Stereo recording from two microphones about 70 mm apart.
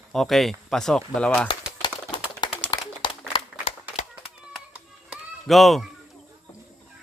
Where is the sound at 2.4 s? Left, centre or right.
Left.